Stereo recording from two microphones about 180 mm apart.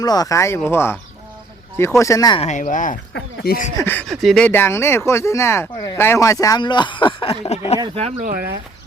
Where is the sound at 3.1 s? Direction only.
60° left (ahead or behind).